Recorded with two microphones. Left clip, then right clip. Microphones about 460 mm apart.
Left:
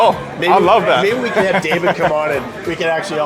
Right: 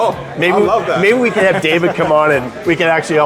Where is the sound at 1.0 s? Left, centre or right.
Right.